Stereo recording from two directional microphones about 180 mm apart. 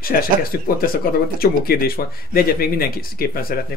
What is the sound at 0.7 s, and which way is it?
Speech, 55° left (ahead or behind).